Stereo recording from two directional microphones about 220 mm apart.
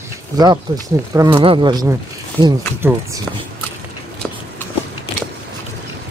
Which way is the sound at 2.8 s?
10° right (ahead or behind).